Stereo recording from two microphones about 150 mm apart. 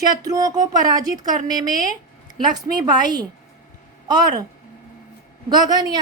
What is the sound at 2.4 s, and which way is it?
A woman's voice, 25° right (ahead or behind).